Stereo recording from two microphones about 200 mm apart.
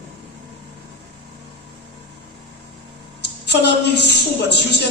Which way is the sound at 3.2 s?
55° left (ahead or behind).